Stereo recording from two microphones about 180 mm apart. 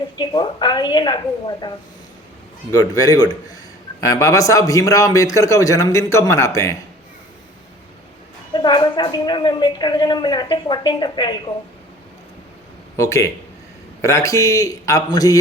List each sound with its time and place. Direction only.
0.2 s a woman's voice: 25° left (ahead or behind)
2.7 s a woman's voice: 20° left (ahead or behind)
8.5 s a woman's voice: 25° left (ahead or behind)
13.0 s a man's voice: 15° left (ahead or behind)